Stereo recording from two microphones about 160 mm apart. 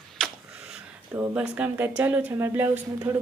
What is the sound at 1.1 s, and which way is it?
A woman's voice, 15° right (ahead or behind).